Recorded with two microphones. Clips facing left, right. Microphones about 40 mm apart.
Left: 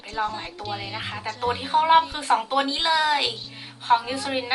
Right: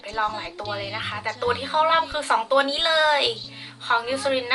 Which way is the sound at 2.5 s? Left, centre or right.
Centre.